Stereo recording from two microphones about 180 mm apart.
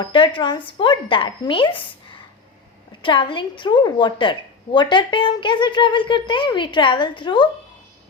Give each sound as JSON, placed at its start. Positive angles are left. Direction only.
{"t": 0.0, "sound": "a woman's voice", "side_deg": 30}
{"t": 3.0, "sound": "a woman's voice", "side_deg": 25}